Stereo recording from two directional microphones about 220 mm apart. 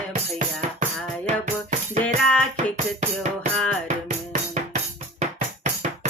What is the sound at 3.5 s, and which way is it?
Music, 5° left (ahead or behind).